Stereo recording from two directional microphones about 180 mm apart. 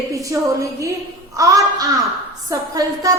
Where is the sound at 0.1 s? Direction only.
15° right (ahead or behind).